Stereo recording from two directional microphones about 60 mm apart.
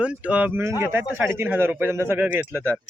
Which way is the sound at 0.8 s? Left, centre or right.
Right.